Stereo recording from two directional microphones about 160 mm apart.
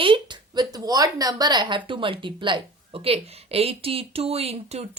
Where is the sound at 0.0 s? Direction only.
30° right (ahead or behind).